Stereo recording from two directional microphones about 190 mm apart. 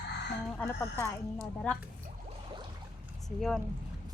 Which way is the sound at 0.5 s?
10° left (ahead or behind).